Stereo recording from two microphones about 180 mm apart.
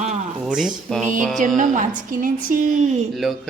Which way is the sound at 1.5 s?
45° right (ahead or behind).